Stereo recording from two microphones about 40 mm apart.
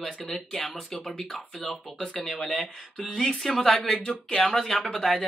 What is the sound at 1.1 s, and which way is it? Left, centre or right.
Speech, centre.